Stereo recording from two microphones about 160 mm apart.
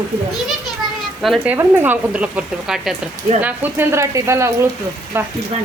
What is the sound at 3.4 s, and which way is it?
Speech, 10° right (ahead or behind).